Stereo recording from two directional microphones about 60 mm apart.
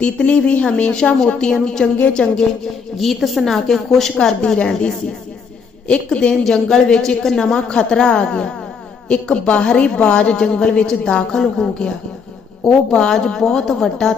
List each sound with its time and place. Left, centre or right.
0.0 s a woman's voice: centre
3.0 s a woman's voice: centre
4.4 s a woman's voice: centre
6.4 s a woman's voice: centre